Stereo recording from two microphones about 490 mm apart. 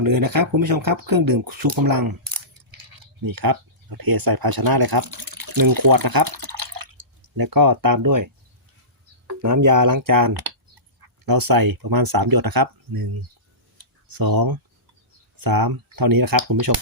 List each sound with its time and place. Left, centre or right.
0.0 s speech: right
9.4 s speech: right
14.1 s speech: right